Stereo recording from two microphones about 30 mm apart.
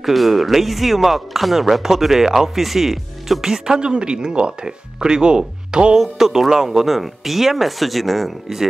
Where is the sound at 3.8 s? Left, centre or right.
Right.